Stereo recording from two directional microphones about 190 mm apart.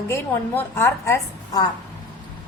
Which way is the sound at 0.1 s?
10° left (ahead or behind).